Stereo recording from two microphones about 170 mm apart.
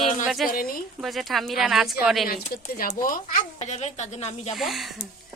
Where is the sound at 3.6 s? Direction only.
40° left (ahead or behind).